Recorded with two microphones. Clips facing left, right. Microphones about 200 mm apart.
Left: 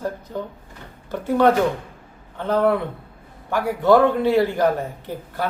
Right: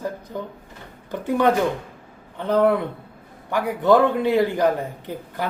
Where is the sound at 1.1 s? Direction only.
15° right (ahead or behind).